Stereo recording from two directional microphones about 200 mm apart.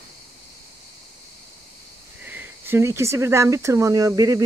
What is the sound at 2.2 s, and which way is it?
Speech, 10° right (ahead or behind).